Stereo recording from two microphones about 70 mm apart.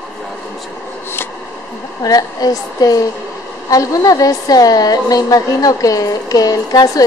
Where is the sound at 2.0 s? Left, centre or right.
Left.